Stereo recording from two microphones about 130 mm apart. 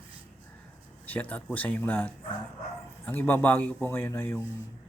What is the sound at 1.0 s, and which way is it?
Speech, 10° left (ahead or behind).